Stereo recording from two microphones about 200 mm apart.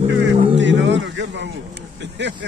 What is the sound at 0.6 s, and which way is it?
A man's voice, 65° right (ahead or behind).